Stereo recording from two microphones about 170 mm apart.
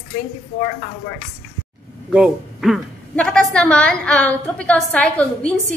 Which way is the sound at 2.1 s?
5° right (ahead or behind).